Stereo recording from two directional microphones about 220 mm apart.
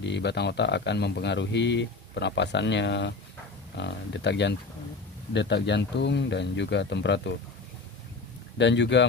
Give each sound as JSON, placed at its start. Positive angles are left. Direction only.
{"t": 0.0, "sound": "speech", "side_deg": 50}
{"t": 8.5, "sound": "speech", "side_deg": 55}